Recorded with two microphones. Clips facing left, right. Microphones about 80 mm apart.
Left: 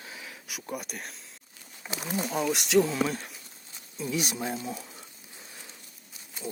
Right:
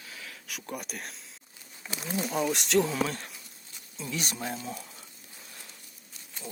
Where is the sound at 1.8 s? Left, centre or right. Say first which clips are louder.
Left 2 dB; centre.